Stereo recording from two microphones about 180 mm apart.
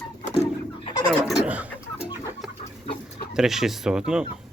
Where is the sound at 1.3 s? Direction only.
10° right (ahead or behind).